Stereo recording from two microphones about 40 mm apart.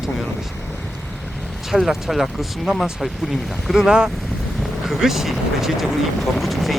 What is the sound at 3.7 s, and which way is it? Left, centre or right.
Speech, centre.